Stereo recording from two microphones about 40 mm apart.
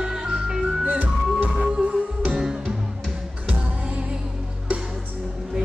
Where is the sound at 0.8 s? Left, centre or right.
Right.